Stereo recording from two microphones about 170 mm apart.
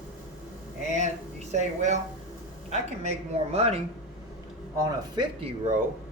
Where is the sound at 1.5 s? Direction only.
45° right (ahead or behind).